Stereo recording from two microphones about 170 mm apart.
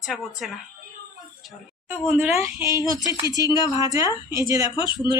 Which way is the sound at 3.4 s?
25° left (ahead or behind).